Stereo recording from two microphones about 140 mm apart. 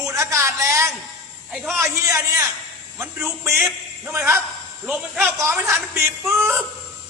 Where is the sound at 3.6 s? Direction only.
15° right (ahead or behind).